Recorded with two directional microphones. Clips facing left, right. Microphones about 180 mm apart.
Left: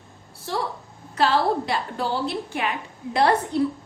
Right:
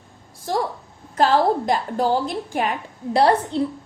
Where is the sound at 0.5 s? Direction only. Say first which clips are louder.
Right 4 dB; 45° right (ahead or behind).